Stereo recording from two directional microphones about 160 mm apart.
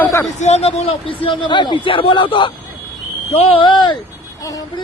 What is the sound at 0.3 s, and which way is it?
Speech, 45° left (ahead or behind).